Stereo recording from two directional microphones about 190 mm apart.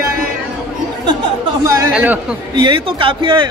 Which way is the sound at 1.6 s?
15° right (ahead or behind).